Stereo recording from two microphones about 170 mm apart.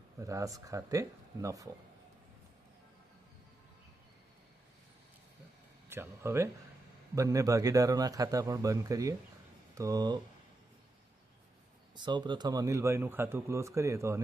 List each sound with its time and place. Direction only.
0.2 s a man's voice: 20° right (ahead or behind)
5.9 s a man's voice: 15° right (ahead or behind)
11.9 s speech: 25° right (ahead or behind)